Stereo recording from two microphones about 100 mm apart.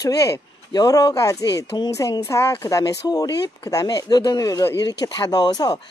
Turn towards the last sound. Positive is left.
turn(degrees=40)  # may be behind; listen again after turning